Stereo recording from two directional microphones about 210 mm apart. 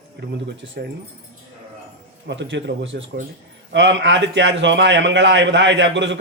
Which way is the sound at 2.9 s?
50° right (ahead or behind).